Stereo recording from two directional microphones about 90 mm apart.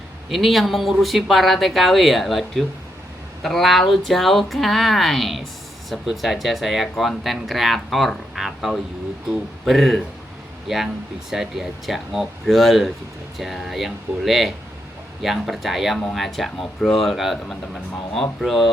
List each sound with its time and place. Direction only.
0.3 s speech: centre (ahead or behind)
11.3 s speech: 5° right (ahead or behind)